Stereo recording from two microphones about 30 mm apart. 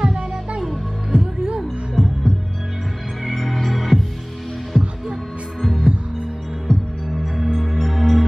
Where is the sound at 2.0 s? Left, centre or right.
Centre.